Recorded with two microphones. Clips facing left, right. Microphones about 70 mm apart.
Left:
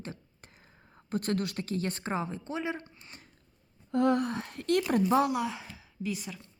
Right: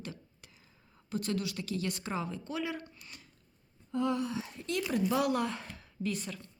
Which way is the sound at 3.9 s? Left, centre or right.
Left.